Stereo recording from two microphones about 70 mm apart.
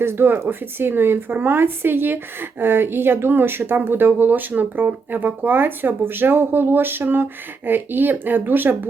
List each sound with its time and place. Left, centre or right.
0.0 s speech: right